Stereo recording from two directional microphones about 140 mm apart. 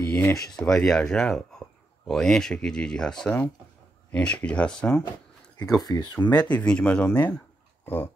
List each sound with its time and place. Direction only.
0.1 s speech: 15° left (ahead or behind)
0.4 s speech: 5° left (ahead or behind)
5.6 s speech: 25° left (ahead or behind)
6.1 s speech: 10° left (ahead or behind)